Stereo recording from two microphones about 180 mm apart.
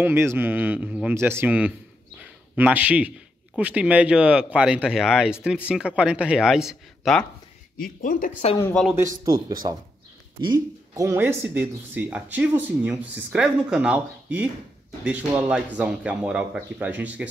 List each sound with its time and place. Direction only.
0.0 s speech: 15° right (ahead or behind)
2.1 s a sound: 10° right (ahead or behind)
3.5 s speech: 5° right (ahead or behind)
8.0 s speech: 50° left (ahead or behind)
8.9 s speech: 15° right (ahead or behind)